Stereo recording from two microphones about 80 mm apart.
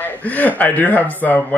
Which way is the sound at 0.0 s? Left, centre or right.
Left.